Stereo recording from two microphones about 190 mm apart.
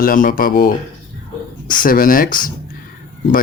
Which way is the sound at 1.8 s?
45° left (ahead or behind).